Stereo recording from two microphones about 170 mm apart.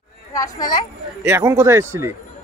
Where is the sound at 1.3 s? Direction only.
15° right (ahead or behind).